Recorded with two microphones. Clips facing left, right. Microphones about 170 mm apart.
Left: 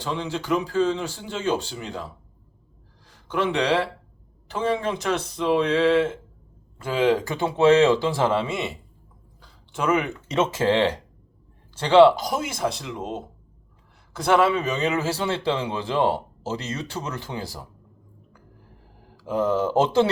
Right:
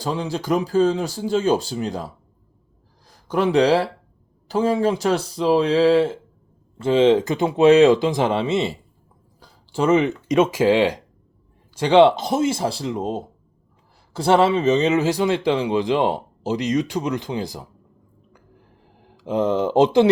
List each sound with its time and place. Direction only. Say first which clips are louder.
0.0 s speech: right 3 dB; 35° right (ahead or behind); by 17.7 s 20° right (ahead or behind)
19.0 s speech: right 3 dB; 20° right (ahead or behind)